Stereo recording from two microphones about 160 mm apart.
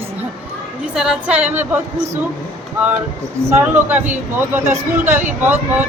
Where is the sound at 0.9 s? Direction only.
5° right (ahead or behind).